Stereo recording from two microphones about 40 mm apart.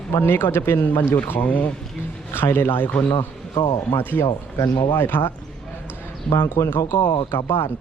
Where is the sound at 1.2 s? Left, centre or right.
Left.